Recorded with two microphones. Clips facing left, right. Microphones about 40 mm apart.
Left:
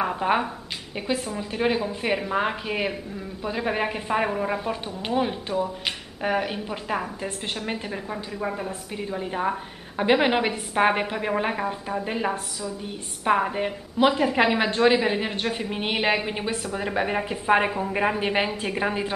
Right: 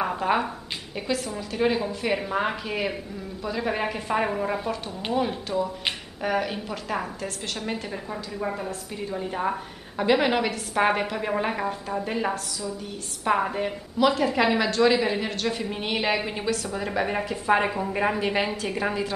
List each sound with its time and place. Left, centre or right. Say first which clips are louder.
0.2 s a woman's voice: left 1 dB; centre
2.1 s a woman's voice: left 1 dB; centre; by 7.5 s left
7.5 s a woman's voice: left 1 dB; centre
10.1 s a woman's voice: left 2 dB; left
13.9 s a woman's voice: left 2 dB; left
18.2 s a woman's voice: left 1 dB; left
18.7 s a woman's voice: left 1 dB; centre